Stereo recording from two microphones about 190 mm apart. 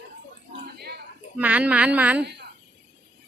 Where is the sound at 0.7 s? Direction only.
55° right (ahead or behind).